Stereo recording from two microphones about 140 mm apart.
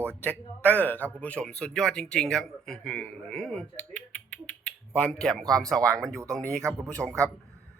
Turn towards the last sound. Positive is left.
turn(degrees=5)  # may be behind; listen again after turning